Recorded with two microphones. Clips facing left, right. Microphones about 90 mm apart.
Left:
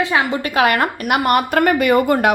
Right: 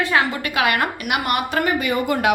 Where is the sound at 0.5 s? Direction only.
40° left (ahead or behind).